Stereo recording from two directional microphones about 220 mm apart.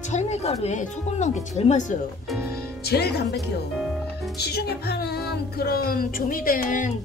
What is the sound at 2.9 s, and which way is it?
Speech, 45° left (ahead or behind).